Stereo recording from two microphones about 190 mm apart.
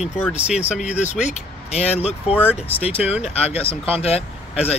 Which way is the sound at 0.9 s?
40° left (ahead or behind).